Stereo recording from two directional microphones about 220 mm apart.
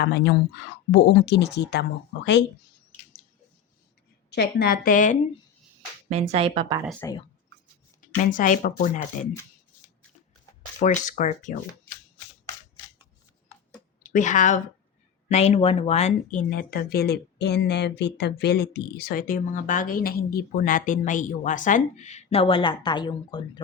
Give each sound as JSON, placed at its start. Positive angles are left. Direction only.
{"t": 0.0, "sound": "speech", "side_deg": 50}
{"t": 4.3, "sound": "speech", "side_deg": 45}
{"t": 6.1, "sound": "speech", "side_deg": -30}
{"t": 7.0, "sound": "speech", "side_deg": 15}
{"t": 8.0, "sound": "speech", "side_deg": 35}
{"t": 9.3, "sound": "shuffling cards", "side_deg": 15}
{"t": 10.8, "sound": "speech", "side_deg": 35}
{"t": 14.0, "sound": "a woman's voice", "side_deg": 35}